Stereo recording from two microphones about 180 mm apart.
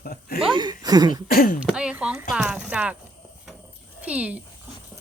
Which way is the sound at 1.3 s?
50° left (ahead or behind).